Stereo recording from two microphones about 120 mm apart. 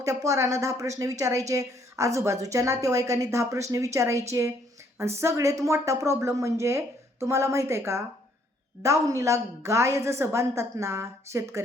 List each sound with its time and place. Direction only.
0.0 s speech: 25° right (ahead or behind)